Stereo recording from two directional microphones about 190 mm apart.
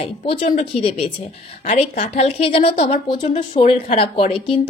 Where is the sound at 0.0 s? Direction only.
35° left (ahead or behind).